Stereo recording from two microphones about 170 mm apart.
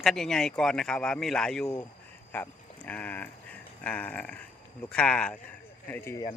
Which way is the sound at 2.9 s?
10° left (ahead or behind).